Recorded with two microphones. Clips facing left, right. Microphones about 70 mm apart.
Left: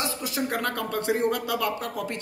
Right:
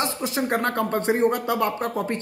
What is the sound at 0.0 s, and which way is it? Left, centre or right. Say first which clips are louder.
Speech: right 4 dB; right.